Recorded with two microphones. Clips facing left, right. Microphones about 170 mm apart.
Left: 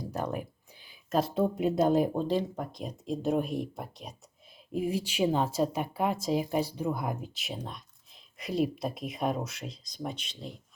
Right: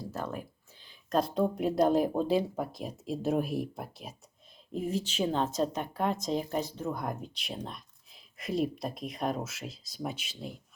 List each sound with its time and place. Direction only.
0.0 s speech: 15° left (ahead or behind); by 4.1 s centre (ahead or behind)
4.7 s speech: 10° left (ahead or behind)